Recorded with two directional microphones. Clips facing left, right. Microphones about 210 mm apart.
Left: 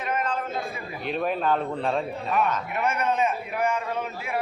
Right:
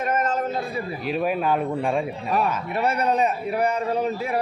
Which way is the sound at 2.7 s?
35° right (ahead or behind).